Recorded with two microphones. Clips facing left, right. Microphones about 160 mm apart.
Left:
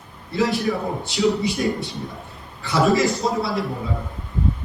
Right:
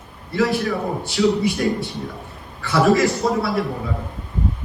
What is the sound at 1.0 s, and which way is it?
Speech, 20° left (ahead or behind).